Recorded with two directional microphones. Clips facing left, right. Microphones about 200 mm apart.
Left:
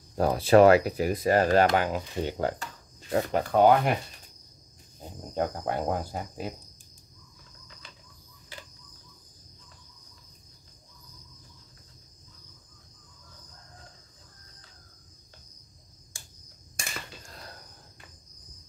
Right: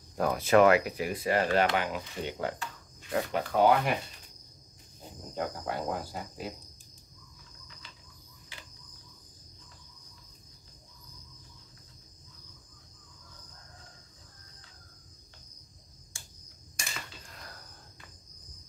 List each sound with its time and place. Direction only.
0.2 s speech: 35° left (ahead or behind)
5.3 s cricket: 50° left (ahead or behind)
16.7 s cutlery: 45° left (ahead or behind)